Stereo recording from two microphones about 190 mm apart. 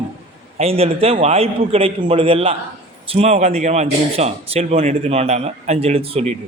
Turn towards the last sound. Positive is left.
turn(degrees=-30)  # may be behind; listen again after turning